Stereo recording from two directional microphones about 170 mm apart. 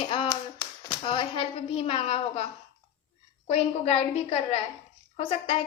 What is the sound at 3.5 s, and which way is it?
A woman's voice, 40° left (ahead or behind).